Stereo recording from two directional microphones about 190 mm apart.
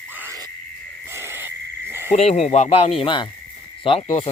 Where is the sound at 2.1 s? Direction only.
35° left (ahead or behind).